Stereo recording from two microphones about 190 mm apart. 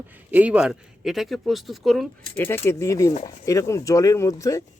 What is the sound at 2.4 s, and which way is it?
Speech, 10° left (ahead or behind).